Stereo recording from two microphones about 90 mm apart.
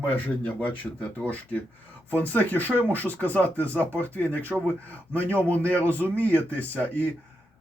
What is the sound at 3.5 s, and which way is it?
Speech, 25° right (ahead or behind).